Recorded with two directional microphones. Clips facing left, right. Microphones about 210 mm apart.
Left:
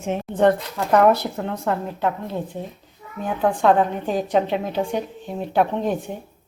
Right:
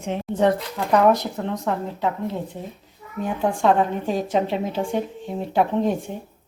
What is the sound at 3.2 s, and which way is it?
Speech, centre (ahead or behind).